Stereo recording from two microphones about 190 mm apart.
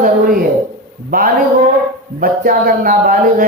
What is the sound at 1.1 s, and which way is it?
Speech, 45° right (ahead or behind).